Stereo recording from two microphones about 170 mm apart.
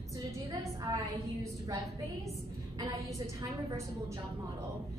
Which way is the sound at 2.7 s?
25° right (ahead or behind).